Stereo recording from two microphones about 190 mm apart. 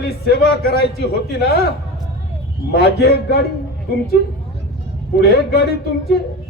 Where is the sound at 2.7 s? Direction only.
60° left (ahead or behind).